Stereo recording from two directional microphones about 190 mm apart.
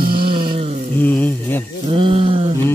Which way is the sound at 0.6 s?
30° right (ahead or behind).